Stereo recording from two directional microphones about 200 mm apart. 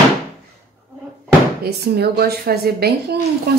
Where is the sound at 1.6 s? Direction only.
50° right (ahead or behind).